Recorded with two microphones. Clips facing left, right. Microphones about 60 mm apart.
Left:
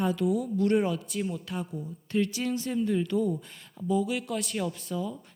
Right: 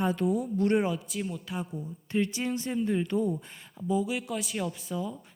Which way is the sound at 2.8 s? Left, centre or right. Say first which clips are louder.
Left 1 dB; right.